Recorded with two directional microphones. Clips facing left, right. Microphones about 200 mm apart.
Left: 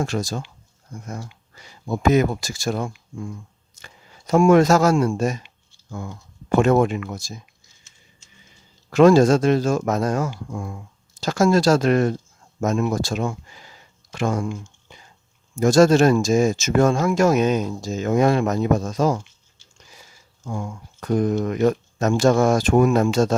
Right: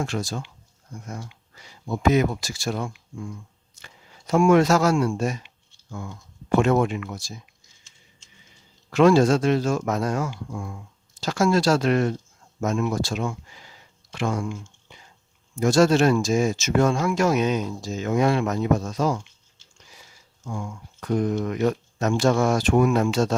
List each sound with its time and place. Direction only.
0.0 s speech: 40° left (ahead or behind)
4.3 s speech: 45° left (ahead or behind)
8.9 s speech: 45° left (ahead or behind)
20.5 s speech: 40° left (ahead or behind)